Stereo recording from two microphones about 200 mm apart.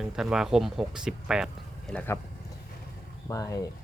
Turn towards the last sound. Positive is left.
turn(degrees=15)  # may be behind; listen again after turning